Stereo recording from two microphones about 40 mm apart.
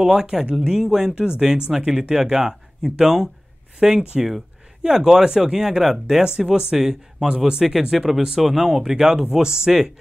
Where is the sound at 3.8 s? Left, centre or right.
Right.